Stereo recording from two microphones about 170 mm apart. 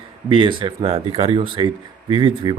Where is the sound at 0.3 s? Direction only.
30° right (ahead or behind).